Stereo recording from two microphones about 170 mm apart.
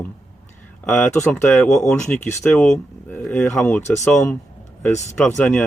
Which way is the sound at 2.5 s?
5° left (ahead or behind).